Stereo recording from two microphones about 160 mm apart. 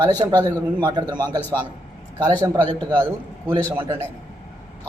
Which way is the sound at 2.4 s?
20° right (ahead or behind).